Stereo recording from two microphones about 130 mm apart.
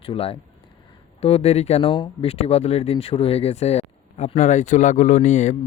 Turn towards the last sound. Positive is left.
turn(degrees=65)  # may be behind; listen again after turning